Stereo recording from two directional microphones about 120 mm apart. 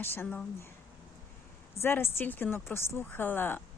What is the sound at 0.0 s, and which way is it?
Speech, 20° left (ahead or behind).